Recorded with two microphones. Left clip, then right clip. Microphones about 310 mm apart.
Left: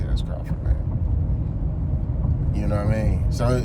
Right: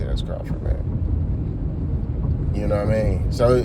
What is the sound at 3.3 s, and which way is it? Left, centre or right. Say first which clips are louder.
Speech: right 8 dB; centre.